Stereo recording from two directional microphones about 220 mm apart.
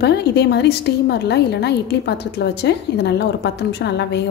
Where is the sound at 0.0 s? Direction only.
50° left (ahead or behind).